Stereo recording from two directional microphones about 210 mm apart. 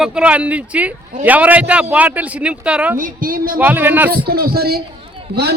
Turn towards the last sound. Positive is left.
turn(degrees=-50)  # may be behind; listen again after turning